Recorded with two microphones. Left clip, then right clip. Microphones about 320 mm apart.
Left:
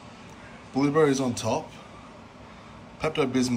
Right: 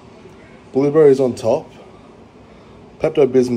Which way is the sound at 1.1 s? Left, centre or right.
Centre.